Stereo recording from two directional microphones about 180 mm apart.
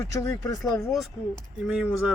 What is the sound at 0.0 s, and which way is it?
Speech, 15° left (ahead or behind).